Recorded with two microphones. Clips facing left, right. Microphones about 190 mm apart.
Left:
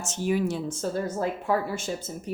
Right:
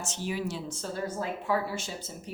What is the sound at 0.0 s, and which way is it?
Speech, 50° left (ahead or behind).